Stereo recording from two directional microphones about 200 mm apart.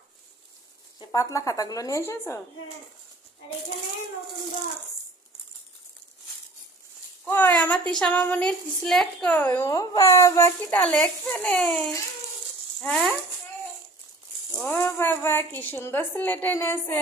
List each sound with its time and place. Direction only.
0.9 s a woman's voice: 15° left (ahead or behind)
7.3 s a woman's voice: 10° left (ahead or behind)
14.5 s a woman's voice: 10° left (ahead or behind)